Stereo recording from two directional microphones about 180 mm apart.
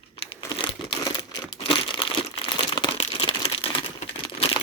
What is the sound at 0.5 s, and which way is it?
Crumpling, 25° left (ahead or behind).